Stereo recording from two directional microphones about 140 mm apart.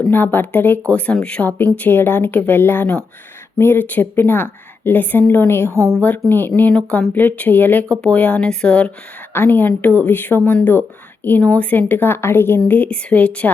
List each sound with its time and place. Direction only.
0.1 s speech: 15° left (ahead or behind)
5.7 s a woman's voice: 20° right (ahead or behind)
6.0 s speech: 10° left (ahead or behind)